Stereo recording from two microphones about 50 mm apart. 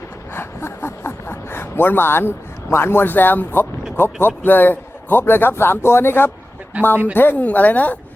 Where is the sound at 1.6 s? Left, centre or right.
Left.